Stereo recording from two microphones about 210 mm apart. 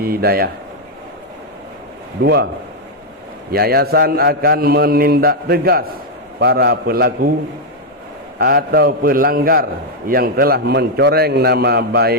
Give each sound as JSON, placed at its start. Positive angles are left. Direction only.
{"t": 0.0, "sound": "a man's voice", "side_deg": -45}
{"t": 2.2, "sound": "a man's voice", "side_deg": -50}
{"t": 3.5, "sound": "a man's voice", "side_deg": -45}
{"t": 8.4, "sound": "a man's voice", "side_deg": -45}